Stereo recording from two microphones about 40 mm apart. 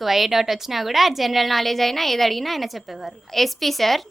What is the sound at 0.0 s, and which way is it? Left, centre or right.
A woman's voice, centre.